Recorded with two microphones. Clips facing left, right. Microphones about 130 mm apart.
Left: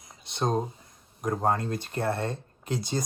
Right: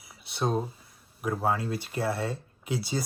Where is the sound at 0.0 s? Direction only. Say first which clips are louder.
Left 1 dB; 5° right (ahead or behind).